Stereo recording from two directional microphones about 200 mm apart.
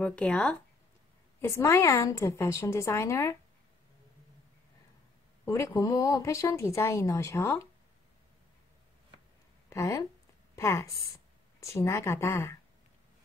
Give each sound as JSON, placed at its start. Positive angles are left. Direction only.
{"t": 0.0, "sound": "speech", "side_deg": 5}
{"t": 5.4, "sound": "speech", "side_deg": 15}
{"t": 9.7, "sound": "a woman's voice", "side_deg": 15}